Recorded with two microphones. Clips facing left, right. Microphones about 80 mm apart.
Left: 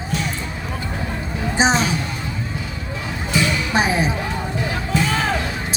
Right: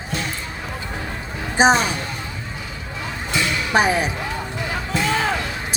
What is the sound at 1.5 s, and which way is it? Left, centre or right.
Speech, right.